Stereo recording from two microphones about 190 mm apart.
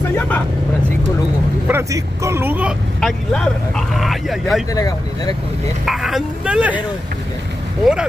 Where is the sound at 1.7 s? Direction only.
15° right (ahead or behind).